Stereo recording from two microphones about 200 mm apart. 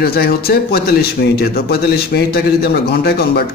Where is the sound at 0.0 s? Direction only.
50° left (ahead or behind).